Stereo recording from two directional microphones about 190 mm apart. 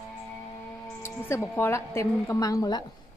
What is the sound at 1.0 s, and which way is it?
A woman's voice, 15° left (ahead or behind).